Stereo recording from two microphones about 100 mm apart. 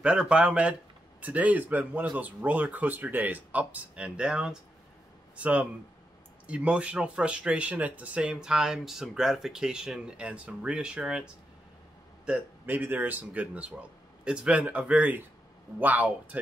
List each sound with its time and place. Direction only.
0.0 s speech: 10° right (ahead or behind)
12.3 s speech: 20° right (ahead or behind)